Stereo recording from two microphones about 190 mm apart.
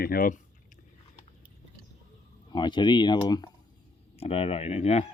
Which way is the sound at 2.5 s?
25° left (ahead or behind).